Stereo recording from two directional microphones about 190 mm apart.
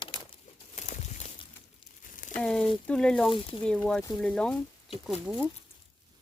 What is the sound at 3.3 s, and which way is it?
Speech, 25° left (ahead or behind).